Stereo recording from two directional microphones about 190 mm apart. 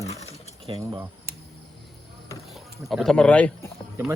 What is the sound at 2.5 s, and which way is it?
Speech, centre (ahead or behind).